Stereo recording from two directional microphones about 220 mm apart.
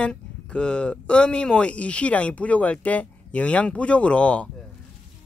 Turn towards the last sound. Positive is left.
turn(degrees=5)  # may be behind; listen again after turning